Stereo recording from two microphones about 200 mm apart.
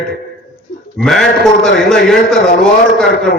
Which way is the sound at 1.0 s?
Centre (ahead or behind).